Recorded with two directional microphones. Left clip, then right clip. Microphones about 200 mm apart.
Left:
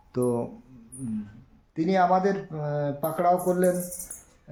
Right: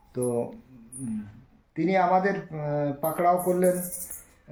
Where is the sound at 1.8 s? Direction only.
10° left (ahead or behind).